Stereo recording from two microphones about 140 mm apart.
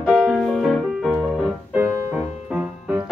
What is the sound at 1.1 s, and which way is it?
Music, 10° right (ahead or behind).